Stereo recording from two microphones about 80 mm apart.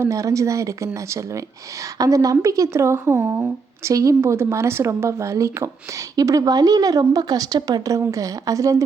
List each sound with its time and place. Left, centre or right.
0.0 s speech: right